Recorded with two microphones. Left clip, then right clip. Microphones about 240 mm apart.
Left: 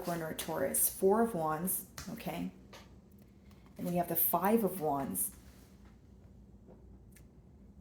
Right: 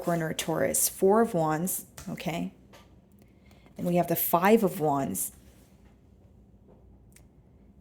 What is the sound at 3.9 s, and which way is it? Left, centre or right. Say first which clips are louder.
A woman's voice: right 8 dB; right.